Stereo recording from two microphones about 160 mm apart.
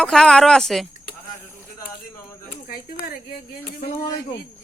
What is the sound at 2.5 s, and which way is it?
Speech, 65° left (ahead or behind).